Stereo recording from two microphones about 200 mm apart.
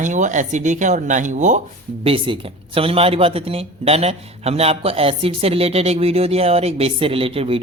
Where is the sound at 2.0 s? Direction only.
25° right (ahead or behind).